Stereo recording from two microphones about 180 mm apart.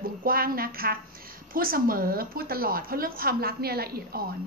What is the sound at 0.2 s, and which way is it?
A woman's voice, 55° right (ahead or behind).